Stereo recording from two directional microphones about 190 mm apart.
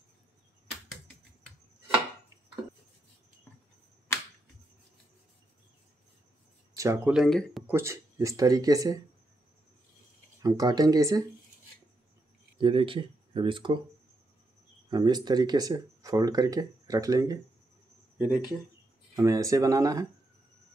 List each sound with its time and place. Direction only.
0.7 s a sound: centre (ahead or behind)
6.7 s a sound: 15° right (ahead or behind)
7.1 s speech: centre (ahead or behind)
7.6 s speech: 15° right (ahead or behind)
10.4 s speech: 20° right (ahead or behind)
12.5 s speech: 25° right (ahead or behind)
14.9 s speech: 20° right (ahead or behind)
18.1 s a sound: 10° right (ahead or behind)
19.1 s speech: 15° right (ahead or behind)